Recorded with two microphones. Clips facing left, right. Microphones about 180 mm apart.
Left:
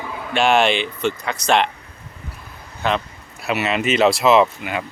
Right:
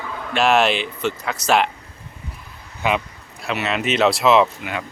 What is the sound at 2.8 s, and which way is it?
Speech, 10° right (ahead or behind).